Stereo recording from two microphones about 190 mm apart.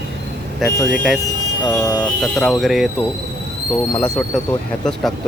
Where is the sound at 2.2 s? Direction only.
Centre (ahead or behind).